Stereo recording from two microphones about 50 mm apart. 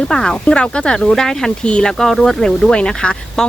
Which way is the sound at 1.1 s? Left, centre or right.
Centre.